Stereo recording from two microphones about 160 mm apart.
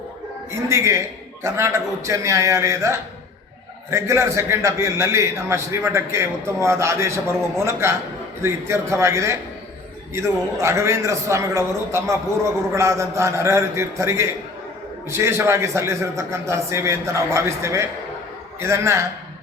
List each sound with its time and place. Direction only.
0.7 s a man's voice: 15° right (ahead or behind)